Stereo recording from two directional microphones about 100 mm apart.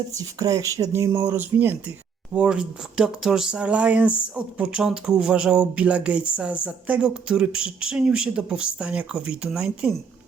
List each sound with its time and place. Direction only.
0.2 s speech: 35° right (ahead or behind); by 9.9 s 10° right (ahead or behind)